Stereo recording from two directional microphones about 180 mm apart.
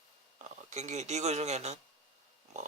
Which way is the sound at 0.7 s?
40° right (ahead or behind).